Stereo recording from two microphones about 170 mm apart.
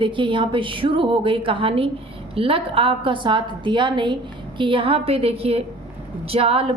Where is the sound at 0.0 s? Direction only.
30° right (ahead or behind).